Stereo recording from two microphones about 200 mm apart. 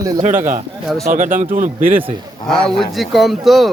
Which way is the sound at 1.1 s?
40° right (ahead or behind).